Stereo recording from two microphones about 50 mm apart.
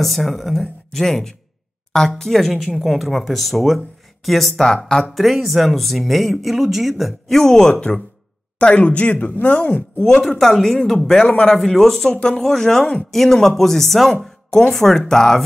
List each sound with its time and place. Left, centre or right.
0.0 s speech: centre
8.5 s speech: left
9.9 s speech: centre
12.1 s speech: centre